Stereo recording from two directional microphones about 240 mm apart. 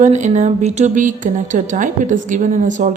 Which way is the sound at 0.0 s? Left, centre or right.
Right.